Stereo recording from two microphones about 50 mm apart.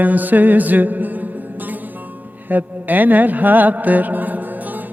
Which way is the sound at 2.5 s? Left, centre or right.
Right.